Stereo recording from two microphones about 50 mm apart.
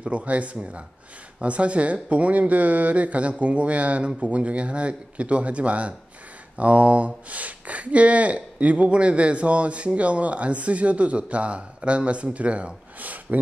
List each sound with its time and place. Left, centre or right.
0.0 s speech: right